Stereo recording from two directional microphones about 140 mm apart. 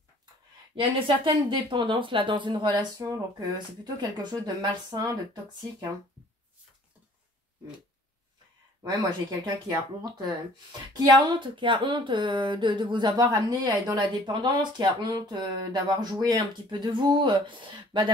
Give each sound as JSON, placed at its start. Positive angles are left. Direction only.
{"t": 0.7, "sound": "speech", "side_deg": -40}
{"t": 9.7, "sound": "speech", "side_deg": -30}